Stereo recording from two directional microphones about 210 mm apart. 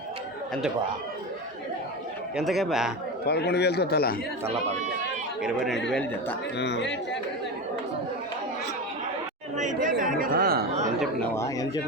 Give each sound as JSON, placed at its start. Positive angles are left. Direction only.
{"t": 2.3, "sound": "speech", "side_deg": 0}
{"t": 3.2, "sound": "a man's voice", "side_deg": 50}
{"t": 5.4, "sound": "speech", "side_deg": 0}
{"t": 6.6, "sound": "speech", "side_deg": 55}
{"t": 9.6, "sound": "speech", "side_deg": -35}
{"t": 10.7, "sound": "speech", "side_deg": -30}
{"t": 11.3, "sound": "speech", "side_deg": 15}